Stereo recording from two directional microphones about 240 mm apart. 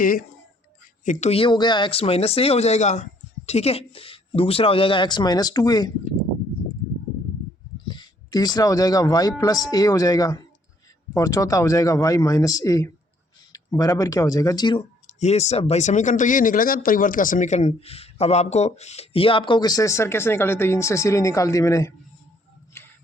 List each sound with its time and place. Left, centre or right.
0.0 s speech: left; by 5.9 s centre
7.9 s speech: centre